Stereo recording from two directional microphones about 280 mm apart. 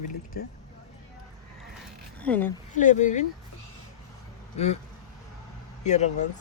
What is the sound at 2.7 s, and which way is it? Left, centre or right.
Speech, left.